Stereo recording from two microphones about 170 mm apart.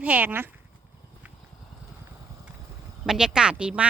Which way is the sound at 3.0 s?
5° right (ahead or behind).